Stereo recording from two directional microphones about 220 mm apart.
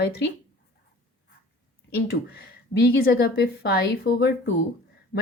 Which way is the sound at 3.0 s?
45° left (ahead or behind).